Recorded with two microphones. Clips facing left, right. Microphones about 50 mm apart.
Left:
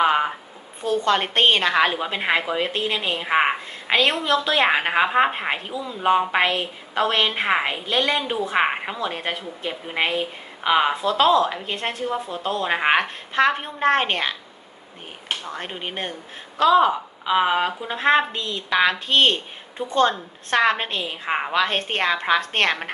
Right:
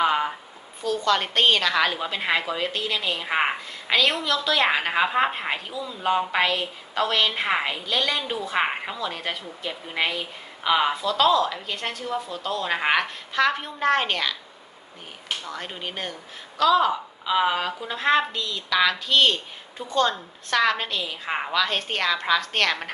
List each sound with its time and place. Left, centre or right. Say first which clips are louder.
0.0 s a sound: left 3 dB; centre
0.8 s a woman's voice: left 2 dB; left
3.2 s a woman's voice: left 6 dB; centre
3.9 s a woman's voice: left 3 dB; left
8.5 s a woman's voice: left 3 dB; centre
9.0 s a woman's voice: left 3 dB; left
15.4 s a woman's voice: left 2 dB; left